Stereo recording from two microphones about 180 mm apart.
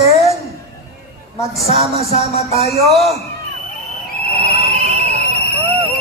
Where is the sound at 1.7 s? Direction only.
35° left (ahead or behind).